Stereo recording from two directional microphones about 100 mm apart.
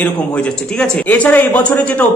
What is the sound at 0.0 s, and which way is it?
A man's voice, 10° left (ahead or behind).